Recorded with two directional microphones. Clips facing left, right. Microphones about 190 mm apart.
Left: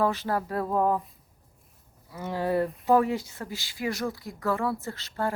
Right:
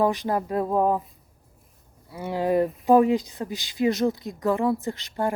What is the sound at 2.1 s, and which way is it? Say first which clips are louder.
A woman's voice: right 4 dB; 15° right (ahead or behind).